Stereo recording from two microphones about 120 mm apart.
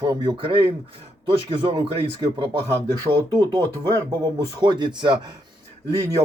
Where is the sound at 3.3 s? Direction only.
35° right (ahead or behind).